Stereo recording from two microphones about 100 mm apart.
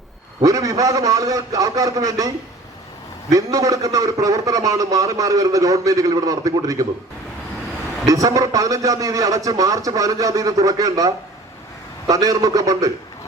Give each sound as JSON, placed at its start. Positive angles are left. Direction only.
{"t": 0.4, "sound": "a man's voice", "side_deg": -35}
{"t": 8.0, "sound": "a man's voice", "side_deg": -35}